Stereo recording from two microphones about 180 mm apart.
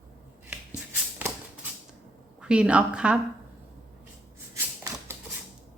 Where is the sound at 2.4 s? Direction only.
5° right (ahead or behind).